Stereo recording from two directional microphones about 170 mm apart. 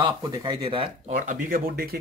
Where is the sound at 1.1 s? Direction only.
55° right (ahead or behind).